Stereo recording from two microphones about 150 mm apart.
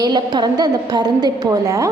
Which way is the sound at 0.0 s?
30° right (ahead or behind).